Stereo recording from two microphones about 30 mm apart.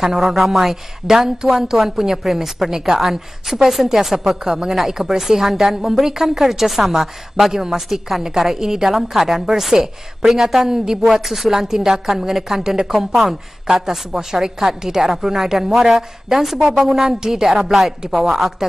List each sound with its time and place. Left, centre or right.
0.0 s a woman's voice: centre
16.6 s a woman's voice: centre
17.2 s a woman's voice: centre
18.0 s a woman's voice: centre